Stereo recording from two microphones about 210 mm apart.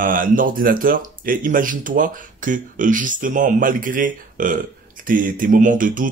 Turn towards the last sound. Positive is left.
turn(degrees=-40)  # may be behind; listen again after turning